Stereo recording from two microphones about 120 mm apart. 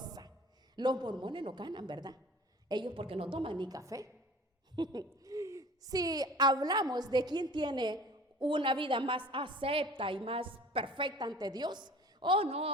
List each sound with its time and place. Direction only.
0.0 s a sound: 35° right (ahead or behind)
0.8 s a woman's voice: 35° right (ahead or behind)
3.7 s a woman's voice: 30° right (ahead or behind); by 12.7 s 55° right (ahead or behind)